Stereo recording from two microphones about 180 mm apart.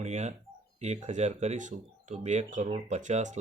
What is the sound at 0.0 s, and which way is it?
Speech, 40° right (ahead or behind).